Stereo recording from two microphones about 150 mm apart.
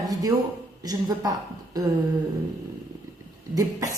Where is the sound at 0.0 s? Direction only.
25° right (ahead or behind).